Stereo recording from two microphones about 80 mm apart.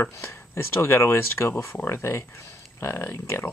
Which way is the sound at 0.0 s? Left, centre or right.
Left.